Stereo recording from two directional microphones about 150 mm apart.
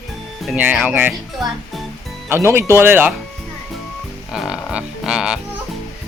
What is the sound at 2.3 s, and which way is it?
Speech, 15° right (ahead or behind).